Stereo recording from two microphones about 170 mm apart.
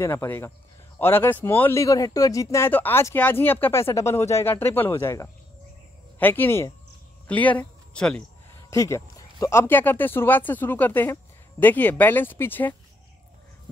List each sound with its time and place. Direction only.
0.0 s speech: 15° left (ahead or behind)
8.6 s speech: 15° left (ahead or behind)